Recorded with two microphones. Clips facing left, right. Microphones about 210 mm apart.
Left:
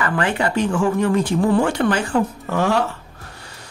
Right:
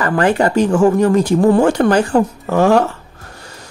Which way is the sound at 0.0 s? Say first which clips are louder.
Right 6 dB; 40° right (ahead or behind).